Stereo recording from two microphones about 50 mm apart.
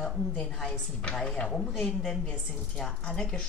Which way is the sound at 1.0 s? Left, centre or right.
Left.